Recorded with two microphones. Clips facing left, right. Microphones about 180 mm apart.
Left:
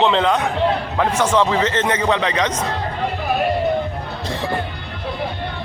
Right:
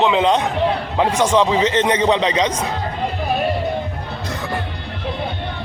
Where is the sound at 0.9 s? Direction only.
15° right (ahead or behind).